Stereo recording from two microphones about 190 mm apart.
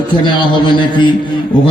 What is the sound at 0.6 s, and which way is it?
Speech, 25° left (ahead or behind).